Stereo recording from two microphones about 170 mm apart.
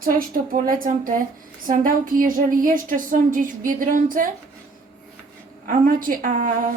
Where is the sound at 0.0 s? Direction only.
55° right (ahead or behind).